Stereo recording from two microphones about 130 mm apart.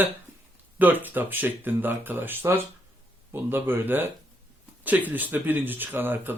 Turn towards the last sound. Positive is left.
turn(degrees=-15)  # may be behind; listen again after turning